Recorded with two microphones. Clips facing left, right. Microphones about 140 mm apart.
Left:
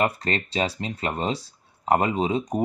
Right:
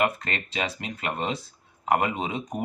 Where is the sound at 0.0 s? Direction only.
35° left (ahead or behind).